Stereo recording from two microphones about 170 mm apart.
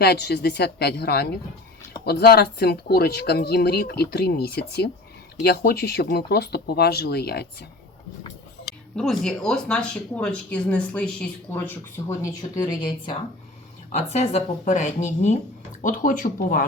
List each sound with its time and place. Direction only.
0.0 s speech: 75° left (ahead or behind)
9.0 s speech: 5° left (ahead or behind)
12.0 s speech: 20° left (ahead or behind)
13.9 s speech: 40° left (ahead or behind); by 16.6 s 55° left (ahead or behind)